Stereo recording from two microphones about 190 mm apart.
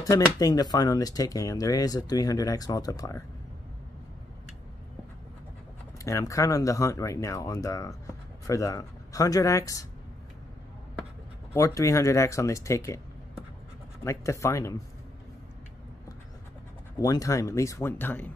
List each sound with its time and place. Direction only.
0.0 s speech: 20° left (ahead or behind)
6.0 s speech: 15° left (ahead or behind)
11.5 s speech: 15° left (ahead or behind)
14.0 s speech: 15° left (ahead or behind)
17.0 s speech: 20° left (ahead or behind)